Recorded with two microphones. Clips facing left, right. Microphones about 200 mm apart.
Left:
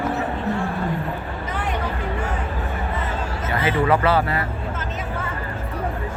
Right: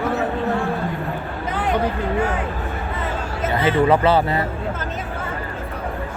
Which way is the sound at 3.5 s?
25° right (ahead or behind).